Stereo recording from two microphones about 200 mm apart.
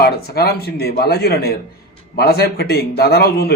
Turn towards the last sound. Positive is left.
turn(degrees=50)  # may be behind; listen again after turning